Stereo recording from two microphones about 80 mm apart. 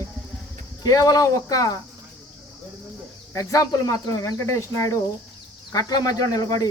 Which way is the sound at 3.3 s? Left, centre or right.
Left.